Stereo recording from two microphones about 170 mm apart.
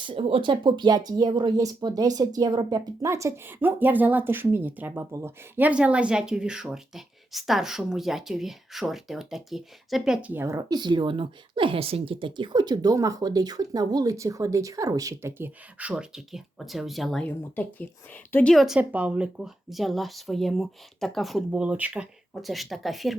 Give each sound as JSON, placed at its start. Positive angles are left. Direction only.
{"t": 0.0, "sound": "speech", "side_deg": -30}
{"t": 18.5, "sound": "speech", "side_deg": -5}